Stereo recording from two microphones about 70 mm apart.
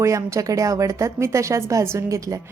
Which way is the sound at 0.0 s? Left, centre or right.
Right.